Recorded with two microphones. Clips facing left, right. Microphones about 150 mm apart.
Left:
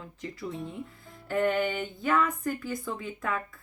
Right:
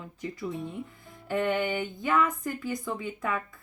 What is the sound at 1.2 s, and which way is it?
Speech, 20° right (ahead or behind).